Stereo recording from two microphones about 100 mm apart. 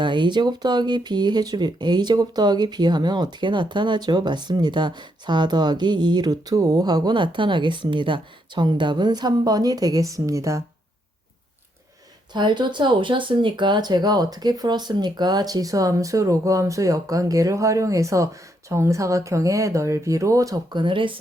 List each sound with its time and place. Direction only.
0.0 s speech: 50° right (ahead or behind); by 10.6 s 30° right (ahead or behind)
12.3 s speech: 50° right (ahead or behind)
20.7 s speech: 55° right (ahead or behind)